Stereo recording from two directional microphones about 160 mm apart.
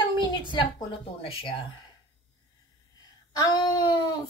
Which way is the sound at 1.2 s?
35° left (ahead or behind).